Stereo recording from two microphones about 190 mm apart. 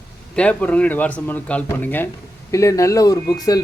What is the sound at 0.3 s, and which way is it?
Speech, 5° left (ahead or behind).